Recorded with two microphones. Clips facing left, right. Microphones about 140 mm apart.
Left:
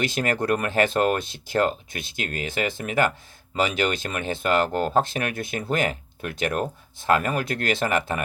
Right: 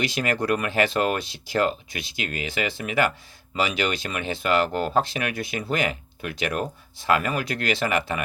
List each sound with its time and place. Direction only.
0.0 s speech: 45° left (ahead or behind)